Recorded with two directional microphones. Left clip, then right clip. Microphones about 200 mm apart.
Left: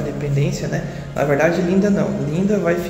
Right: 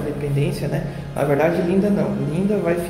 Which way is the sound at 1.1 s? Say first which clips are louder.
Left 2 dB; centre (ahead or behind).